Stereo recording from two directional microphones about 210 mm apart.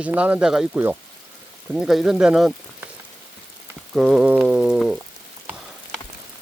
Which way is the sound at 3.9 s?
Centre (ahead or behind).